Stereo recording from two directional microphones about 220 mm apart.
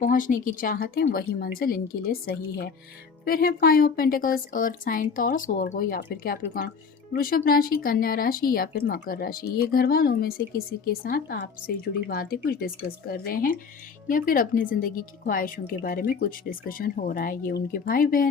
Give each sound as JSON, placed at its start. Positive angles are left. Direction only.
{"t": 0.0, "sound": "a woman's voice", "side_deg": 35}